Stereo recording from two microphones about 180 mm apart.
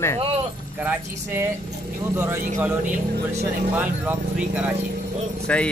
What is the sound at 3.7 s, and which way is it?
Speech, 10° right (ahead or behind).